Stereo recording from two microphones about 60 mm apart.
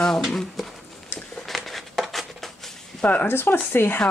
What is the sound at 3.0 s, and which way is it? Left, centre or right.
Speech, left.